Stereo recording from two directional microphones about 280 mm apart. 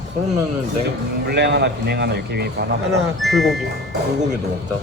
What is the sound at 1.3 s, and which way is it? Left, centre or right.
Speech, right.